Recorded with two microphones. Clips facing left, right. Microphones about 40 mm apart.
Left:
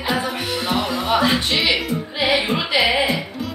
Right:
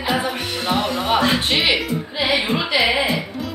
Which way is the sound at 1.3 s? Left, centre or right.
Centre.